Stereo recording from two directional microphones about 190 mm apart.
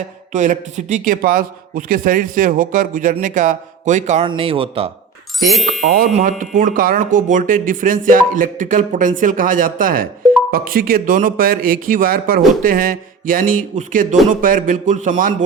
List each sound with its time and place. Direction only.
0.3 s a man's voice: 40° right (ahead or behind)
5.4 s speech: centre (ahead or behind)
5.8 s a man's voice: 50° right (ahead or behind)